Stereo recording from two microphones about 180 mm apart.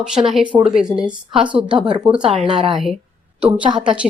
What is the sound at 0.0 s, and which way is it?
A woman's voice, 5° right (ahead or behind).